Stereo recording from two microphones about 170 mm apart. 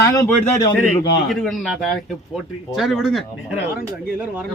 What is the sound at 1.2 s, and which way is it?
A man's voice, centre (ahead or behind).